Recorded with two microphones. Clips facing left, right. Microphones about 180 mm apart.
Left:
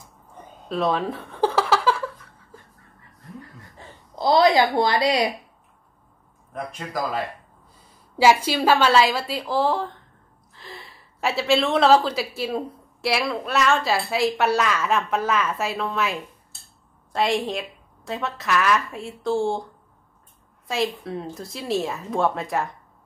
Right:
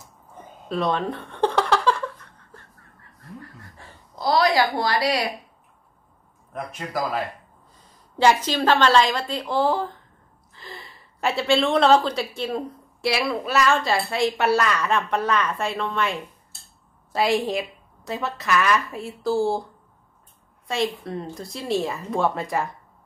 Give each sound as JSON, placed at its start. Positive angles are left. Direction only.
{"t": 0.7, "sound": "a sound", "side_deg": 0}
{"t": 3.7, "sound": "a woman's voice", "side_deg": 25}
{"t": 6.5, "sound": "speech", "side_deg": 0}
{"t": 8.2, "sound": "speech", "side_deg": 10}
{"t": 20.6, "sound": "speech", "side_deg": 0}